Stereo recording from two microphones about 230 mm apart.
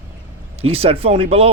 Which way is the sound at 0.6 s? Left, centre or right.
Right.